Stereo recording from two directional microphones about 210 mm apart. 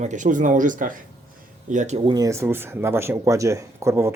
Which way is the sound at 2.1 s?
15° right (ahead or behind).